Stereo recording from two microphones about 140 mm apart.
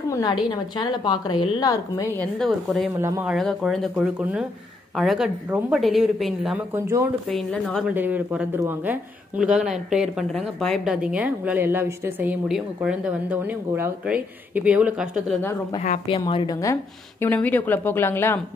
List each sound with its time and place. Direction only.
0.1 s a woman's voice: 25° left (ahead or behind)
2.1 s speech: 5° left (ahead or behind)
3.0 s speech: 15° right (ahead or behind)
3.3 s speech: centre (ahead or behind)
6.7 s speech: 20° right (ahead or behind)
7.2 s speech: 5° left (ahead or behind)
7.9 s speech: 15° right (ahead or behind)
16.3 s a woman's voice: 35° left (ahead or behind)
17.2 s speech: 10° left (ahead or behind)